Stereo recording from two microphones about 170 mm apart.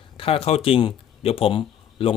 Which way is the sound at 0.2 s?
35° left (ahead or behind).